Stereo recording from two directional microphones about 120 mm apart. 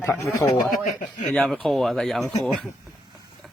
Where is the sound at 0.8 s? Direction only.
90° left.